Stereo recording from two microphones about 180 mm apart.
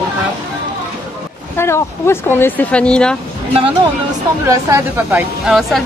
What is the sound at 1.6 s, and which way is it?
Speech, 15° left (ahead or behind).